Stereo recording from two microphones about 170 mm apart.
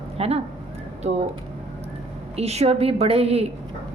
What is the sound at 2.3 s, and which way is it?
A woman's voice, 40° right (ahead or behind).